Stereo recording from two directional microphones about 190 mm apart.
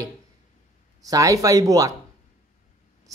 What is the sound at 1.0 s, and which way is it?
Speech, 20° right (ahead or behind).